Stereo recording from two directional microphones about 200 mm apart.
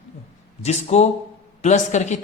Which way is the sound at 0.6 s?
35° left (ahead or behind).